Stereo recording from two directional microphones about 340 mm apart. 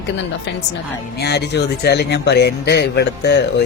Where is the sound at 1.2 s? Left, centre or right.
Left.